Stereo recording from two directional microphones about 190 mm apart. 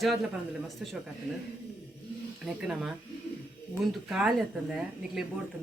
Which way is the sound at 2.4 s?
5° right (ahead or behind).